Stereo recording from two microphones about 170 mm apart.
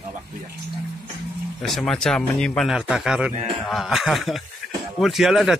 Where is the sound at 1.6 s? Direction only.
Centre (ahead or behind).